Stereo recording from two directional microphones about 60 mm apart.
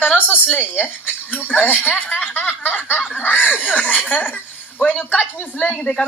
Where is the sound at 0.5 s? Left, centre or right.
Left.